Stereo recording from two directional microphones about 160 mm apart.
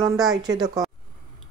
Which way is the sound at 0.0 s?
20° right (ahead or behind).